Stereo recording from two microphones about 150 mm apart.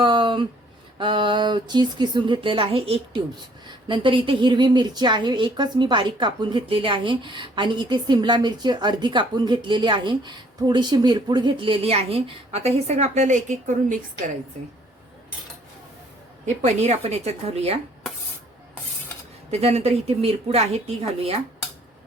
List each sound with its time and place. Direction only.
0.0 s a sound: 35° right (ahead or behind)
0.9 s a woman's voice: 35° right (ahead or behind); by 13.7 s 55° right (ahead or behind)
16.6 s speech: 45° right (ahead or behind)
19.5 s speech: 45° right (ahead or behind)